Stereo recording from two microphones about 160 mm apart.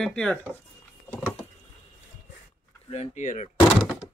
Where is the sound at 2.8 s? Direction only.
45° left (ahead or behind).